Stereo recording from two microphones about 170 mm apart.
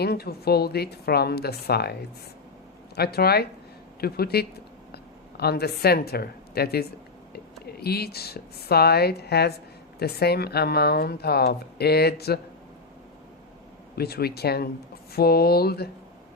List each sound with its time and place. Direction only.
0.0 s speech: 70° left (ahead or behind)
13.9 s speech: 65° left (ahead or behind)